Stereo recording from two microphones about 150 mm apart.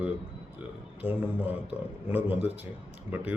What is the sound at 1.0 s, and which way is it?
A man's voice, 10° right (ahead or behind).